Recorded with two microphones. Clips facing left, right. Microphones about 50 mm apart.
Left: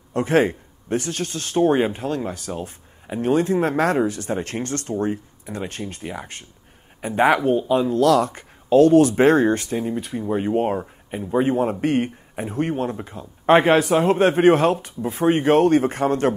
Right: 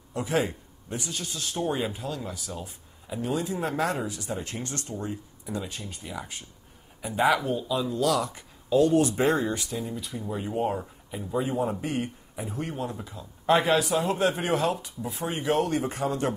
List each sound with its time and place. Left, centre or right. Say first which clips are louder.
0.1 s a man's voice: left 9 dB; left